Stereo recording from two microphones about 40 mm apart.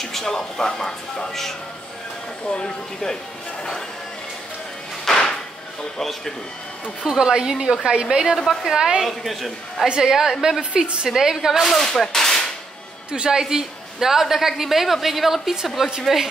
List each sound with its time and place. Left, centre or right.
0.0 s speech: centre
2.4 s speech: left
5.0 s music: centre
5.9 s speech: centre
7.1 s a woman's voice: centre
7.9 s a woman's voice: right
9.0 s a man's voice: centre
9.8 s a woman's voice: right
11.6 s speech: centre
12.0 s gunshot: centre
13.1 s a woman's voice: centre